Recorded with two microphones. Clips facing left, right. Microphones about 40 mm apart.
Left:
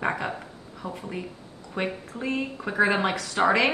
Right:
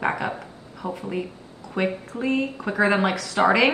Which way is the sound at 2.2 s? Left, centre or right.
Centre.